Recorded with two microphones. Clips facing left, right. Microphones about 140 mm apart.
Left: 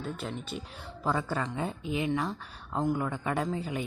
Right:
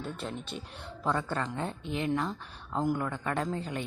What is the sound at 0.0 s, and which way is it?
Speech, centre (ahead or behind).